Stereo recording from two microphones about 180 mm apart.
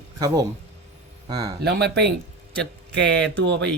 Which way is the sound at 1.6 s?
65° right (ahead or behind).